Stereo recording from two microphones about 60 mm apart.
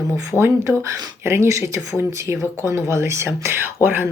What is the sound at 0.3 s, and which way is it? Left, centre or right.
Speech, right.